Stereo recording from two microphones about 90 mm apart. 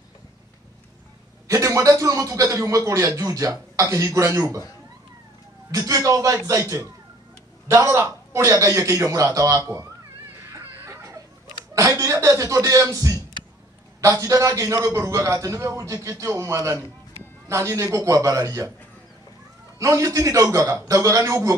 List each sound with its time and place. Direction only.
1.5 s a man's voice: 35° right (ahead or behind)
5.7 s a man's voice: 40° right (ahead or behind)
10.5 s a sound: 30° right (ahead or behind)
12.0 s a man's voice: 35° right (ahead or behind)
19.8 s a man's voice: 40° right (ahead or behind)